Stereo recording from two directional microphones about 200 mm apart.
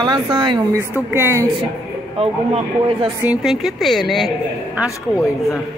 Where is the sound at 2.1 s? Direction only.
30° right (ahead or behind).